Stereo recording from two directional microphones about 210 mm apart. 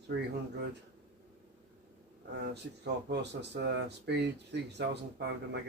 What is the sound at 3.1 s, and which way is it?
Speech, 55° right (ahead or behind).